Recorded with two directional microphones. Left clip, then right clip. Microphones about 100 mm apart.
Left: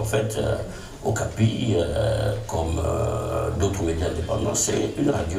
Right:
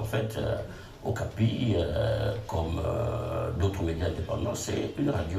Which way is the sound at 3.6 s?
45° left (ahead or behind).